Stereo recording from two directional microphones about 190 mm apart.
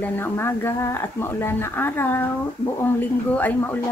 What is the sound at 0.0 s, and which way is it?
Speech, 10° left (ahead or behind).